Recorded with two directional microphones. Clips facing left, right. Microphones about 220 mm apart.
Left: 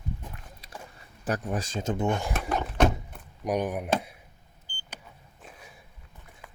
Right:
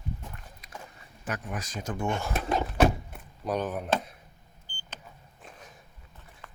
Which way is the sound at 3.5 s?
15° left (ahead or behind).